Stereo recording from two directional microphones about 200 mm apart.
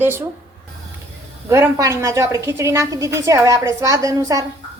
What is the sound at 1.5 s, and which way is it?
A woman's voice, 15° right (ahead or behind).